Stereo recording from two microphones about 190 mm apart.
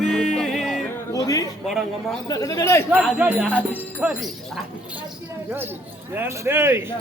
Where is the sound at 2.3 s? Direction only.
15° left (ahead or behind).